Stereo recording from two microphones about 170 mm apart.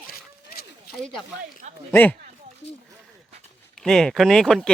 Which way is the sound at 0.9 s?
70° left (ahead or behind).